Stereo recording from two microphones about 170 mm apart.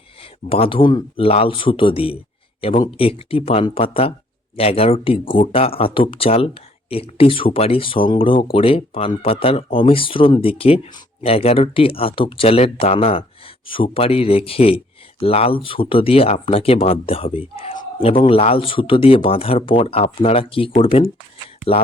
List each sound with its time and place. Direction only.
0.4 s speech: 35° left (ahead or behind)